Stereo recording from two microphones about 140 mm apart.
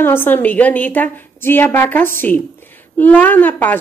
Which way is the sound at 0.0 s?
15° left (ahead or behind).